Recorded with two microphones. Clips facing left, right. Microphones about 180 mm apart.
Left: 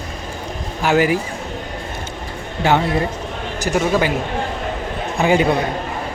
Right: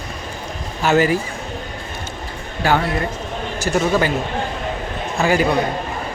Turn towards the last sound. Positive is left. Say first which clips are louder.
# left 2 dB
turn(degrees=25)  # may be behind; listen again after turning